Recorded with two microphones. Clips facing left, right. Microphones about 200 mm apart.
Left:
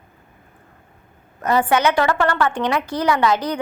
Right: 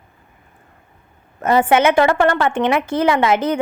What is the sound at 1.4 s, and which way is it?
A woman's voice, 25° right (ahead or behind).